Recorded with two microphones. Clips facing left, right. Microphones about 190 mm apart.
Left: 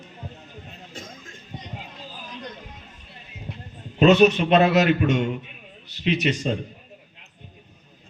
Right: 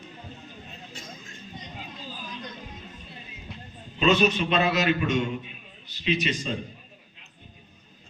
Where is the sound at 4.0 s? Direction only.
60° left (ahead or behind).